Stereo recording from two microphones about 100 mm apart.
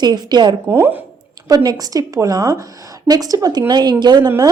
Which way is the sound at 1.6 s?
40° right (ahead or behind).